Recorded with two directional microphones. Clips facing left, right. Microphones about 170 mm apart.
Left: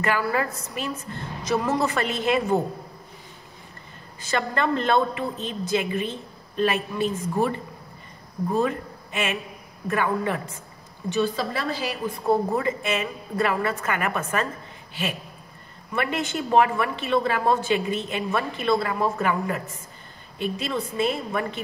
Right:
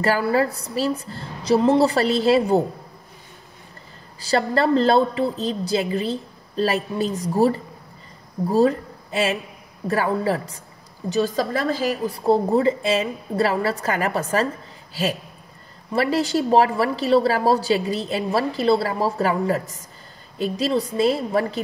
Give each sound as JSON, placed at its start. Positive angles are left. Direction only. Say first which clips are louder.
{"t": 0.0, "sound": "a woman's voice", "louder": "right 5 dB", "side_deg": -30}
{"t": 4.2, "sound": "a woman's voice", "louder": "right 5 dB", "side_deg": -35}
{"t": 12.3, "sound": "a woman's voice", "louder": "right 5 dB", "side_deg": -30}
{"t": 15.9, "sound": "a woman's voice", "louder": "right 6 dB", "side_deg": -35}